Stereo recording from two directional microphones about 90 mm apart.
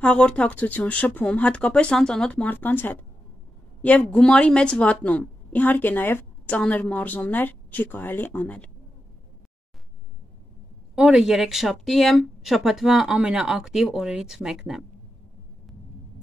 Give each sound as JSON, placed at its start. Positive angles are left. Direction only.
{"t": 0.0, "sound": "a woman's voice", "side_deg": 10}
{"t": 11.0, "sound": "speech", "side_deg": -5}